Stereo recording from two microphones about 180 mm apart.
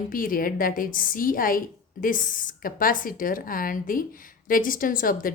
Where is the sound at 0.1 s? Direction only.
50° left (ahead or behind).